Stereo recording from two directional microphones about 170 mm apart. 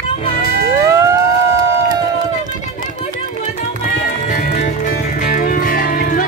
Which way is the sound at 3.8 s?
50° left (ahead or behind).